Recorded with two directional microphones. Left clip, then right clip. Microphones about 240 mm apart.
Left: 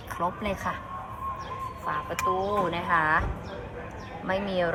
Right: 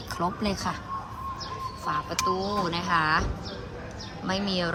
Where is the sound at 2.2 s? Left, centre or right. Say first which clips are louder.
Left 3 dB; centre.